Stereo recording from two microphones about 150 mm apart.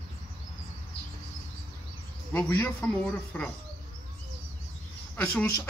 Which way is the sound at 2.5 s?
10° left (ahead or behind).